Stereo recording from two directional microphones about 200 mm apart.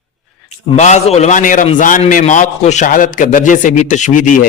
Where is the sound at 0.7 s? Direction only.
35° left (ahead or behind).